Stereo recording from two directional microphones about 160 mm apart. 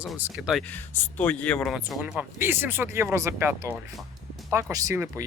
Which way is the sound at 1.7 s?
5° right (ahead or behind).